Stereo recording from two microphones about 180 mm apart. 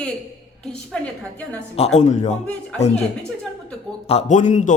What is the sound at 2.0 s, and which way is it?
Speech, 40° left (ahead or behind).